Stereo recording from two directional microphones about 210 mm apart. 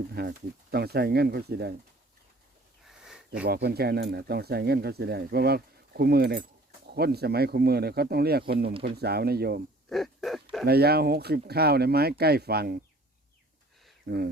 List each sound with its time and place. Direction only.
0.1 s speech: 50° right (ahead or behind)
3.0 s a sound: 5° right (ahead or behind)
3.4 s speech: 50° right (ahead or behind)
9.9 s dog: centre (ahead or behind)
10.7 s speech: 50° right (ahead or behind)